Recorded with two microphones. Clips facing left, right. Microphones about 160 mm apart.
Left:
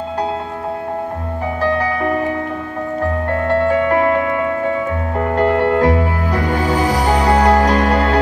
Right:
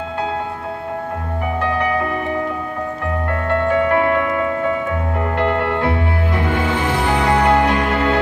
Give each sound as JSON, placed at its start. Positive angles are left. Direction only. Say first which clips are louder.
{"t": 3.3, "sound": "music", "louder": "left 2 dB", "side_deg": 35}